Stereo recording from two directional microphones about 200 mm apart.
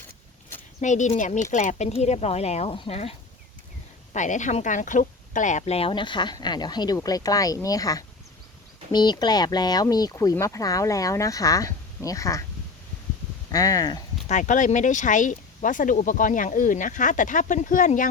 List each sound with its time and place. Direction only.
0.8 s speech: 40° left (ahead or behind); by 12.5 s 15° left (ahead or behind)
13.5 s speech: 15° left (ahead or behind)
14.3 s speech: 40° left (ahead or behind)